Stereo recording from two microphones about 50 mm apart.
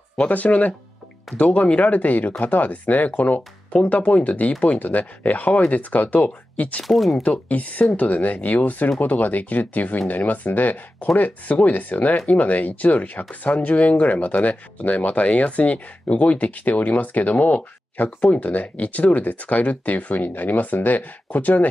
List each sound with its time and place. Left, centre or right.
0.3 s speech: left
6.8 s speech: centre
7.2 s speech: left